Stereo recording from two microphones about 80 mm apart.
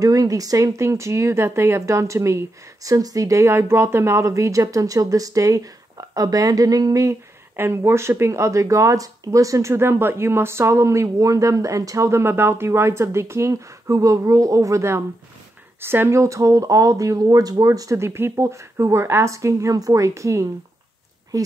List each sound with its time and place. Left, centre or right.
0.0 s speech: right
7.5 s speech: right